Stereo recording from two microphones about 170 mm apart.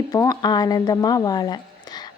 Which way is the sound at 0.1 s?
20° left (ahead or behind).